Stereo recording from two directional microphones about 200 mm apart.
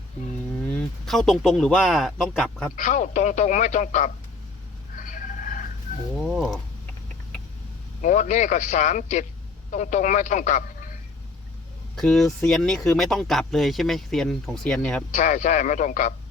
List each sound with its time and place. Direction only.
0.6 s speech: 5° left (ahead or behind)
2.7 s speech: 40° left (ahead or behind)
4.9 s a sound: 40° left (ahead or behind)
6.1 s speech: centre (ahead or behind)
8.0 s speech: 40° left (ahead or behind)
11.9 s speech: centre (ahead or behind)
15.1 s speech: 40° left (ahead or behind)